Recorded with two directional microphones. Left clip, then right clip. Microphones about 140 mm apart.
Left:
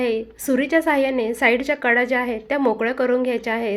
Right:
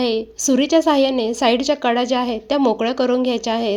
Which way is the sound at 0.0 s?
50° right (ahead or behind).